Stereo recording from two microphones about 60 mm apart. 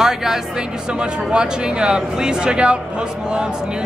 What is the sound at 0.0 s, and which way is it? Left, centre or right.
Music, centre.